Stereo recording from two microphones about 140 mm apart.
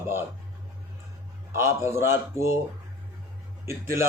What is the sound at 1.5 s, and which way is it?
Speech, 20° right (ahead or behind).